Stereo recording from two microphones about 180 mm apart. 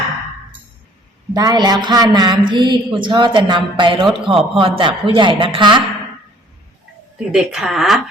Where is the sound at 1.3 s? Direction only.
20° right (ahead or behind).